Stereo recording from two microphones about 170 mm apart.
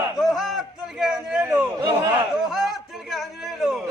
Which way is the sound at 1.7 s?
20° right (ahead or behind).